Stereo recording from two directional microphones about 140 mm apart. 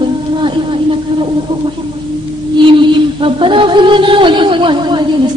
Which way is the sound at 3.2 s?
40° right (ahead or behind).